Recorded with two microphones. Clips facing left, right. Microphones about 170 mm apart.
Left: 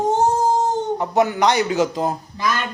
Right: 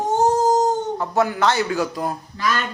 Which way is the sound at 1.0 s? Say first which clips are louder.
Left 2 dB; 20° left (ahead or behind).